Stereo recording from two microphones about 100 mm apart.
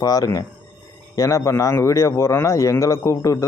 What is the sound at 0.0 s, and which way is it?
A man's voice, 35° left (ahead or behind).